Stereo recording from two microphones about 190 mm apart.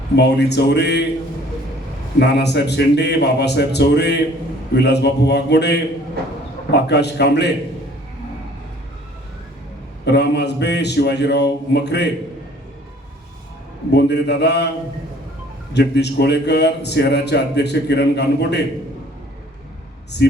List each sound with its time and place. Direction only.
0.2 s a man's voice: 60° left (ahead or behind)
2.1 s a man's voice: 60° left (ahead or behind)
10.1 s a man's voice: 60° left (ahead or behind)
13.9 s a man's voice: 60° left (ahead or behind)
15.7 s a man's voice: 60° left (ahead or behind)
20.1 s a man's voice: 60° left (ahead or behind)